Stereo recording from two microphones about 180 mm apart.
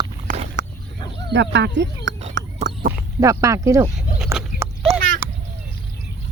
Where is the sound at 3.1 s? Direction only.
20° right (ahead or behind).